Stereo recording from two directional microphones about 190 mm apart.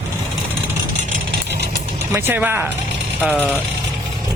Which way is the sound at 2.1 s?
10° right (ahead or behind).